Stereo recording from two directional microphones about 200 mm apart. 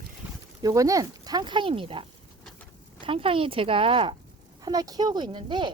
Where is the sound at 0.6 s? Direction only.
15° right (ahead or behind).